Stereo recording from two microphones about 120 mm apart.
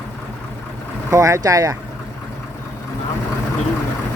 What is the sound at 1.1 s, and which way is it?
Speech, 25° right (ahead or behind).